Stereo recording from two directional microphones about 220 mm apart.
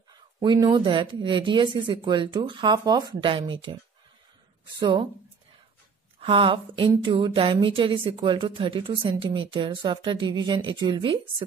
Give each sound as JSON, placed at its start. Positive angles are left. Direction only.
{"t": 0.4, "sound": "speech", "side_deg": -20}
{"t": 4.7, "sound": "speech", "side_deg": -20}
{"t": 6.1, "sound": "speech", "side_deg": -25}